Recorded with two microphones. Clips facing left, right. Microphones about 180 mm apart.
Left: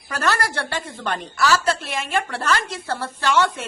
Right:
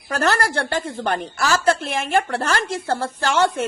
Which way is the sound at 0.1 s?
55° right (ahead or behind).